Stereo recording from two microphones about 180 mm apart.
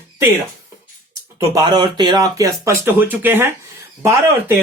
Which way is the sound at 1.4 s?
20° right (ahead or behind).